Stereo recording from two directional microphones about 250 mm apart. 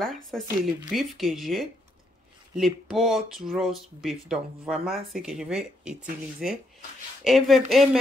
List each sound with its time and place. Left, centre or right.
0.0 s speech: centre